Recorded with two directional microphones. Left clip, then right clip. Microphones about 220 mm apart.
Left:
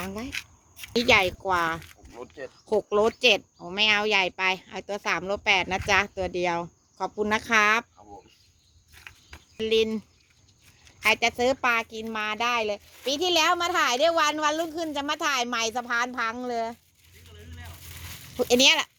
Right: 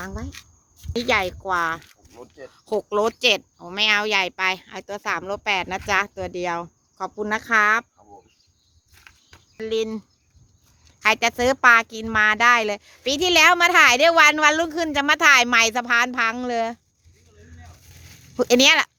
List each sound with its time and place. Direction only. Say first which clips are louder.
0.9 s speech: left 1 dB; 10° left (ahead or behind)
9.6 s a sound: left 1 dB; 10° left (ahead or behind)
11.0 s speech: right 4 dB; 20° right (ahead or behind); by 16.7 s 40° right (ahead or behind)
18.3 s speech: right 4 dB; 25° right (ahead or behind)